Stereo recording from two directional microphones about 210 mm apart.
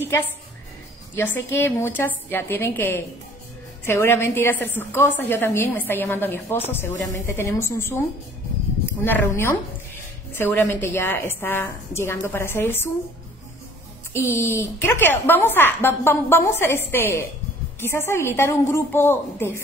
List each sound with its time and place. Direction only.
1.1 s a woman's voice: 10° left (ahead or behind)
9.0 s a woman's voice: 10° left (ahead or behind)
14.1 s a woman's voice: 10° left (ahead or behind)